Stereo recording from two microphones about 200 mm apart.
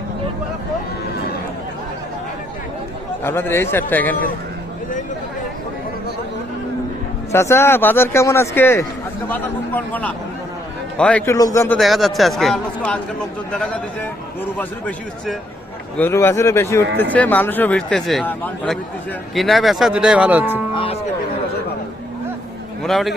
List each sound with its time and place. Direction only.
3.2 s speech: 10° left (ahead or behind)
7.3 s speech: 15° left (ahead or behind)
11.8 s speech: centre (ahead or behind)
20.7 s speech: 25° left (ahead or behind)
22.8 s speech: centre (ahead or behind)